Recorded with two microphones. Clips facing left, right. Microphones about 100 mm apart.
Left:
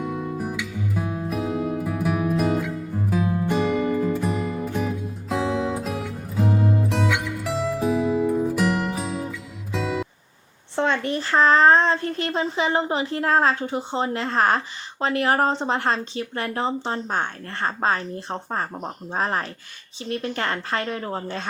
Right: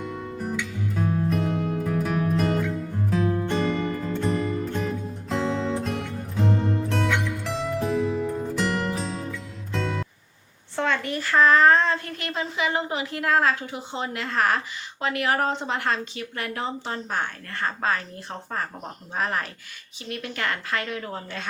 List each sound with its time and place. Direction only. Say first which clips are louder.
0.0 s music: left 4 dB; 5° left (ahead or behind)
10.8 s speech: left 3 dB; 25° left (ahead or behind)